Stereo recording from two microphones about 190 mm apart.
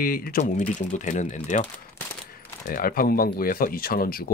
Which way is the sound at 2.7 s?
50° left (ahead or behind).